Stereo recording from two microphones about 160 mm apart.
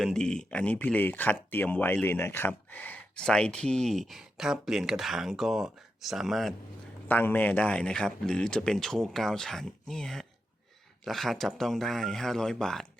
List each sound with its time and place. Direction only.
0.0 s speech: 5° left (ahead or behind)
7.1 s speech: 10° left (ahead or behind)